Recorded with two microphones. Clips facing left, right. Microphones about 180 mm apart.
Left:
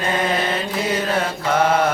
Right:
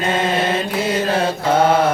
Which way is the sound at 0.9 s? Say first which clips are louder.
Right 3 dB; 30° right (ahead or behind).